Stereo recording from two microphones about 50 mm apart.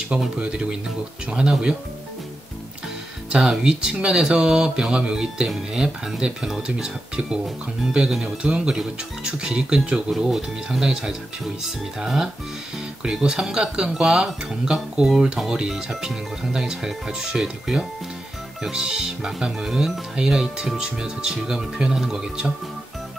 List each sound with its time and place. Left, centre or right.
0.4 s speech: centre
3.3 s speech: centre